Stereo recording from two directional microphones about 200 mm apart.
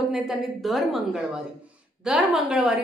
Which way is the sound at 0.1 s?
Centre (ahead or behind).